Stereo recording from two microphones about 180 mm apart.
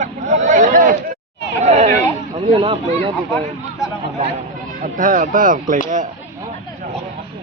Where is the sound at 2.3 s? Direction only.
30° right (ahead or behind).